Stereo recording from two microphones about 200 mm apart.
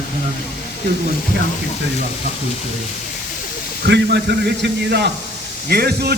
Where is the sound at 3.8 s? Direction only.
55° right (ahead or behind).